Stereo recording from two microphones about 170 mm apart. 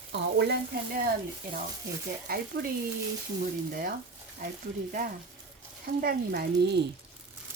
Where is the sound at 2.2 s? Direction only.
65° right (ahead or behind).